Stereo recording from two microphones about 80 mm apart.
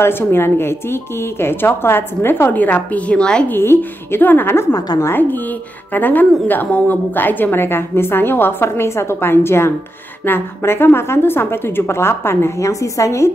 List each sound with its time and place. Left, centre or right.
0.0 s a woman's voice: left; by 3.4 s centre
3.4 s a woman's voice: left
4.7 s a woman's voice: left
5.0 s a woman's voice: left